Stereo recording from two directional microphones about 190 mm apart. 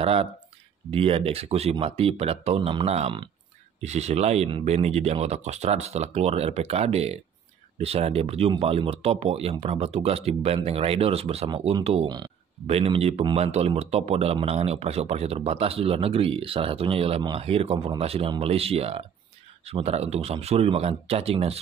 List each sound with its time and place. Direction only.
0.0 s speech: 30° right (ahead or behind)